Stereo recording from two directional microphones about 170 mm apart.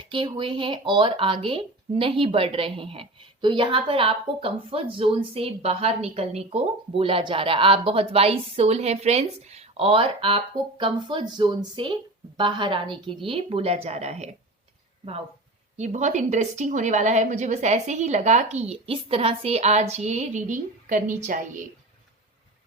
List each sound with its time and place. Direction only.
0.0 s a woman's voice: 30° right (ahead or behind)
15.8 s a woman's voice: 45° right (ahead or behind)